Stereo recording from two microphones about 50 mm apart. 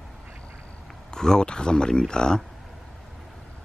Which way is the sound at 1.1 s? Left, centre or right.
Centre.